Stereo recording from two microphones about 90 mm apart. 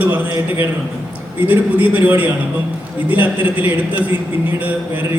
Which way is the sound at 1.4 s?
20° right (ahead or behind).